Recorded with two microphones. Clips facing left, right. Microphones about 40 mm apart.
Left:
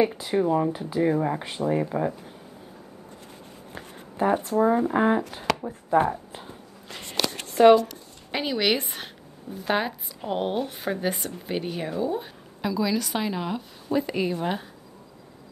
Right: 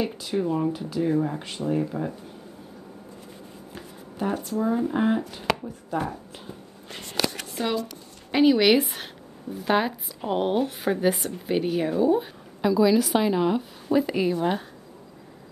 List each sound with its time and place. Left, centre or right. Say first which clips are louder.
0.0 s speech: left 4 dB; centre
1.7 s speech: left 1 dB; left
3.7 s speech: left 3 dB; left
7.0 s a sound: right 1 dB; centre
8.3 s speech: right 6 dB; centre